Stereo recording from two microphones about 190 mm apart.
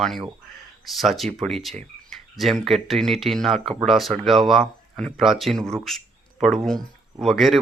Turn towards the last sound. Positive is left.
turn(degrees=0)  # may be behind; listen again after turning